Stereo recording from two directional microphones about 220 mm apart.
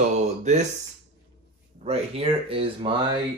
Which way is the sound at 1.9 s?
25° right (ahead or behind).